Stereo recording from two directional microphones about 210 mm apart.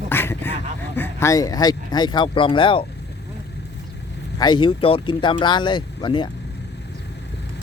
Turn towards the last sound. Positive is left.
turn(degrees=20)  # may be behind; listen again after turning